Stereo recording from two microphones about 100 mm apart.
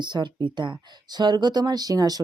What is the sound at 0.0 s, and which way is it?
Speech, 50° right (ahead or behind).